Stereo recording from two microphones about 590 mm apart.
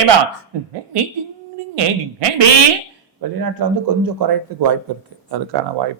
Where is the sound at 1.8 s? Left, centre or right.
Right.